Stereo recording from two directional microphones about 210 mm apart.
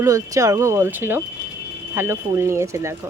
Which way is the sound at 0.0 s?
15° right (ahead or behind).